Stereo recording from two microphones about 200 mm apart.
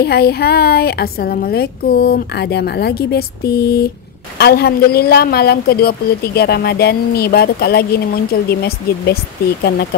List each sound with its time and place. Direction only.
0.0 s speech: 50° left (ahead or behind)